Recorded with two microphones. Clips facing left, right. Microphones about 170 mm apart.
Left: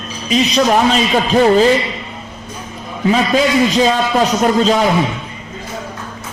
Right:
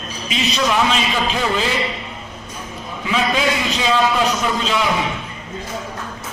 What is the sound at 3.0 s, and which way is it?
A man's voice, 40° left (ahead or behind).